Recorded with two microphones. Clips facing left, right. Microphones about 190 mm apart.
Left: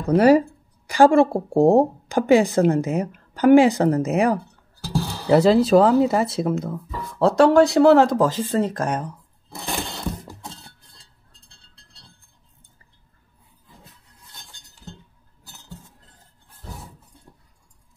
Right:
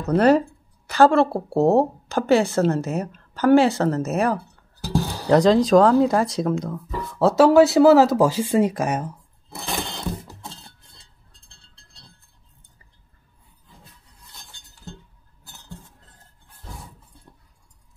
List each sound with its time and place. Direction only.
0.0 s speech: 10° left (ahead or behind)
4.8 s music: 15° right (ahead or behind)
5.2 s speech: 5° left (ahead or behind)
10.2 s a sound: 5° left (ahead or behind)